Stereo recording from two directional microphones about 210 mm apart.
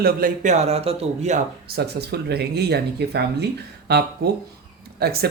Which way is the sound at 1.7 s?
50° right (ahead or behind).